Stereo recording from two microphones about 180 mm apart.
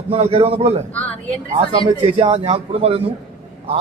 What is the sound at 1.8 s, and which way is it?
A man's voice, 30° right (ahead or behind).